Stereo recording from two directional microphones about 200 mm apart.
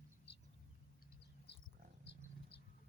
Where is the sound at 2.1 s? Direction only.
55° left (ahead or behind).